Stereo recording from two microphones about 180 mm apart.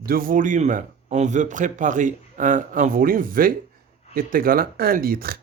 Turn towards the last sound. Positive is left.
turn(degrees=-55)  # may be behind; listen again after turning